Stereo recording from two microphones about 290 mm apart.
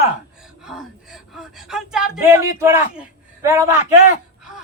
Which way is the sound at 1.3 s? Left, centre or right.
Centre.